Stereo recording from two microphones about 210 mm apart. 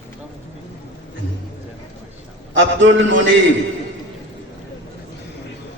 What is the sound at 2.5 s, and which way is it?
Speech, 65° right (ahead or behind).